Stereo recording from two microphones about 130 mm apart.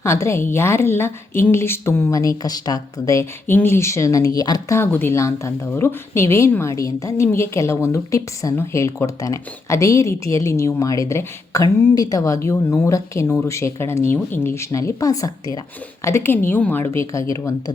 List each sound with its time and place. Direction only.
0.0 s speech: 20° left (ahead or behind)
4.8 s speech: 15° left (ahead or behind)